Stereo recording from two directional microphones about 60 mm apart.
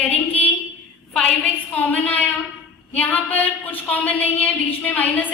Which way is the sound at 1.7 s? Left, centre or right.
Left.